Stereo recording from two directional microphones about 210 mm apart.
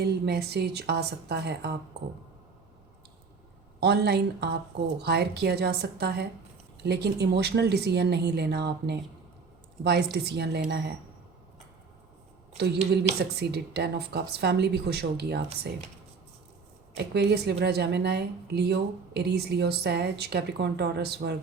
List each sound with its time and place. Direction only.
0.0 s a woman's voice: 50° right (ahead or behind)
3.8 s a woman's voice: 50° right (ahead or behind)
12.5 s a woman's voice: 50° right (ahead or behind)
17.2 s a woman's voice: 50° right (ahead or behind)